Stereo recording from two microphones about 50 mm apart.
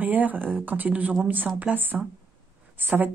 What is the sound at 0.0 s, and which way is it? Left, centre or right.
Speech, right.